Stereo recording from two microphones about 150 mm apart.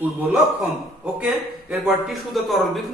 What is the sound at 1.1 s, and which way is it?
Speech, 5° right (ahead or behind).